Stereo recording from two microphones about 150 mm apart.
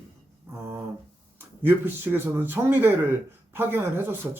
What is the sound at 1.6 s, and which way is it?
Speech, 15° right (ahead or behind).